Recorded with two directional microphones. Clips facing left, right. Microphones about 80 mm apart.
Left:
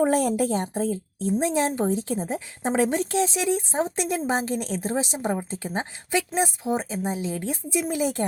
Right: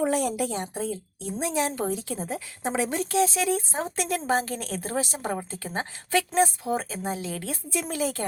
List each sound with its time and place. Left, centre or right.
0.0 s a woman's voice: left; by 8.2 s centre